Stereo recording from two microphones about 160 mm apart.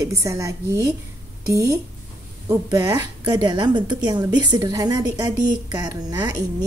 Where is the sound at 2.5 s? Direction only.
20° right (ahead or behind).